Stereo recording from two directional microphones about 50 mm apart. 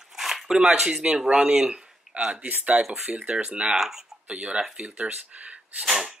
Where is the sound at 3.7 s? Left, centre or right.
Centre.